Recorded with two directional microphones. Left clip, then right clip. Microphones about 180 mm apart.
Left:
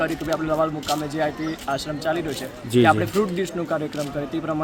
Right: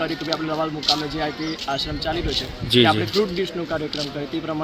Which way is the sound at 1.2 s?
15° left (ahead or behind).